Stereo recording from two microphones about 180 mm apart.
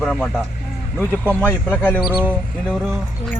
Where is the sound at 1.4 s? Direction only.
10° left (ahead or behind).